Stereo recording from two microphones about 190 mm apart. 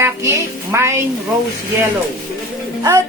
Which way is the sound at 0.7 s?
15° right (ahead or behind).